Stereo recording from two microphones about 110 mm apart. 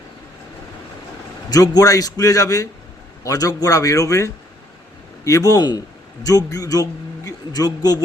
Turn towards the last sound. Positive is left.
turn(degrees=35)  # may be behind; listen again after turning